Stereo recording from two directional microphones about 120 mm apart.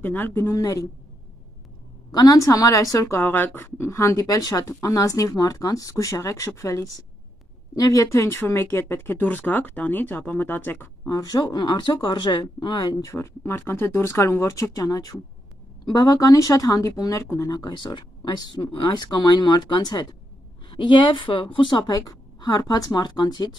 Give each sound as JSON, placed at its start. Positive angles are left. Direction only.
{"t": 0.0, "sound": "speech", "side_deg": 15}
{"t": 2.1, "sound": "speech", "side_deg": 30}
{"t": 11.1, "sound": "speech", "side_deg": 30}